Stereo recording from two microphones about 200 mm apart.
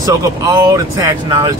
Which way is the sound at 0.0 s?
15° right (ahead or behind).